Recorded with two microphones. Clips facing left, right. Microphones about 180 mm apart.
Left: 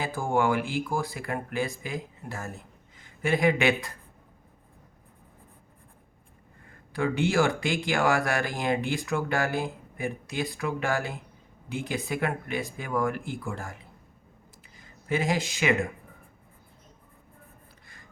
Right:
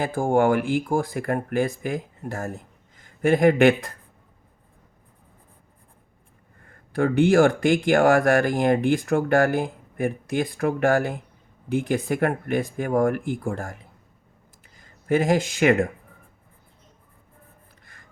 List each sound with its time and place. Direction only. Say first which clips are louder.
0.0 s speech: right 6 dB; 50° right (ahead or behind)
6.7 s speech: right 6 dB; 50° right (ahead or behind)
14.8 s speech: right 7 dB; 50° right (ahead or behind)